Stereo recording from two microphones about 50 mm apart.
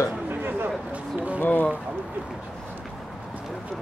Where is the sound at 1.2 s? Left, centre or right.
Right.